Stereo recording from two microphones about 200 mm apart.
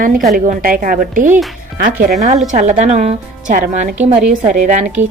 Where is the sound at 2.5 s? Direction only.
35° right (ahead or behind).